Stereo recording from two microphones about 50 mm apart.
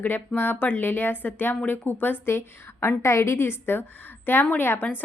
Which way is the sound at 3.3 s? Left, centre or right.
Left.